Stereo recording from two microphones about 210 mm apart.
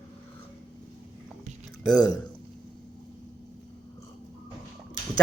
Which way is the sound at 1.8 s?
5° left (ahead or behind).